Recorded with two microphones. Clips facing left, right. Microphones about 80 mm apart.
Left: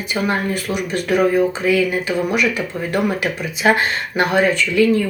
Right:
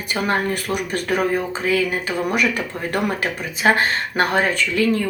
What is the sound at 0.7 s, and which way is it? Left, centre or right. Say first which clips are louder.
Speech: left 5 dB; right.